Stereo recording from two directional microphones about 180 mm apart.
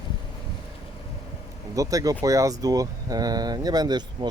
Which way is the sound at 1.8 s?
20° right (ahead or behind).